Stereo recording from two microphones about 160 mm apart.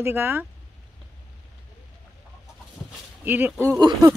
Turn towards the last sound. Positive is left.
turn(degrees=-25)  # may be behind; listen again after turning